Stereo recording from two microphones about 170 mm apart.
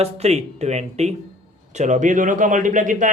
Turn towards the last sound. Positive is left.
turn(degrees=-50)  # may be behind; listen again after turning